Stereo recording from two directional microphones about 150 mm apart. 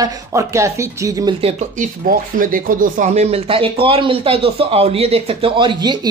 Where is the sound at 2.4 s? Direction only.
65° right (ahead or behind).